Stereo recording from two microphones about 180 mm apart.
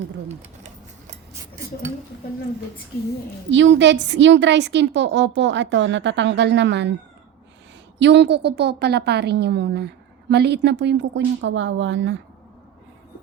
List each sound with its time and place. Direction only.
0.3 s a sound: 40° right (ahead or behind)
3.5 s a woman's voice: 90° right; by 6.9 s 75° right (ahead or behind)
7.9 s a woman's voice: 75° right (ahead or behind)